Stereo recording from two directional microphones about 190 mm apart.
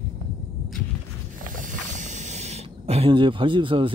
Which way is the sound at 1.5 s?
40° right (ahead or behind).